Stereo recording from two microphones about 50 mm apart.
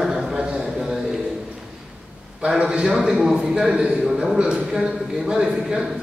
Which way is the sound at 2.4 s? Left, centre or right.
Centre.